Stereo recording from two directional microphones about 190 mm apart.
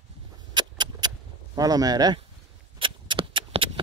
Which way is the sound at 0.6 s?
20° right (ahead or behind).